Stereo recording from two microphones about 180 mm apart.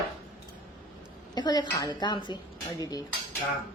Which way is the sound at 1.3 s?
20° left (ahead or behind).